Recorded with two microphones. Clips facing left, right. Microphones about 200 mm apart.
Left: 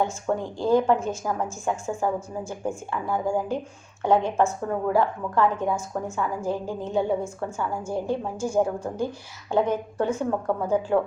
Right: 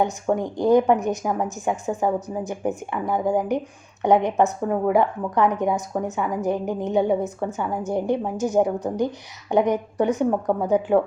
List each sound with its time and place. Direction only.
0.0 s a woman's voice: 15° right (ahead or behind)